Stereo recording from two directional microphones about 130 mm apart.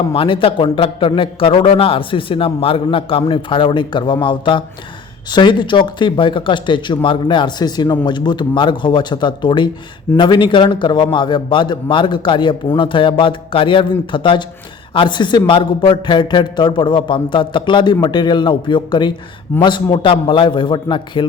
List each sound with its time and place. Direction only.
0.1 s a man's voice: 45° left (ahead or behind)